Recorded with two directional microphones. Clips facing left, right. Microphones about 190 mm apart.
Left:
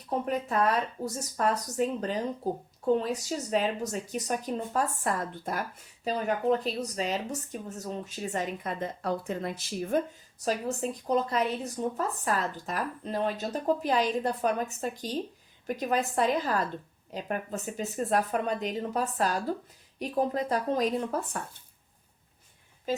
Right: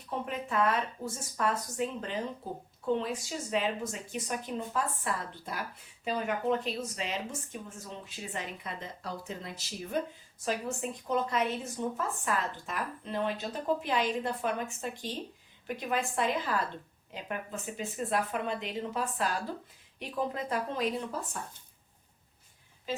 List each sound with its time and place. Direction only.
0.1 s speech: 40° left (ahead or behind)
10.4 s speech: 35° left (ahead or behind)
21.1 s speech: 60° left (ahead or behind)
22.9 s speech: 40° left (ahead or behind)